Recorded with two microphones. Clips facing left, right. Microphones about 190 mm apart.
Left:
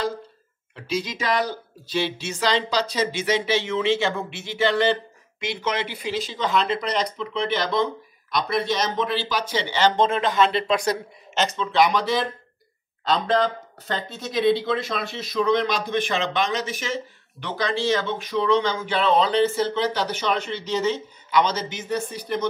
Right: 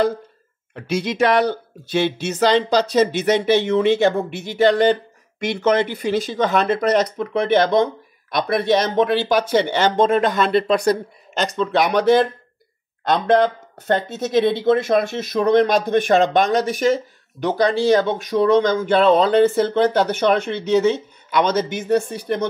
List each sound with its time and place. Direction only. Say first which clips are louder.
0.7 s speech: right 7 dB; 65° right (ahead or behind)
17.4 s speech: right 8 dB; 45° right (ahead or behind)